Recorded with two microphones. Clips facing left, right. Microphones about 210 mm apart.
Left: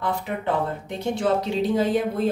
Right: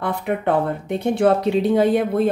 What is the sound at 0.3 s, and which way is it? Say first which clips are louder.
Speech: right 9 dB; 60° right (ahead or behind).